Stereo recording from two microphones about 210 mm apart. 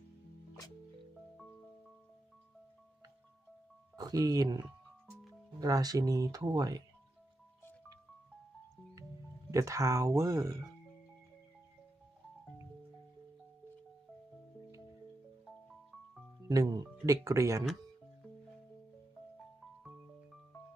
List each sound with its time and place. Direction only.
3.9 s speech: 15° right (ahead or behind)
9.5 s speech: 15° right (ahead or behind)
16.5 s speech: 15° right (ahead or behind)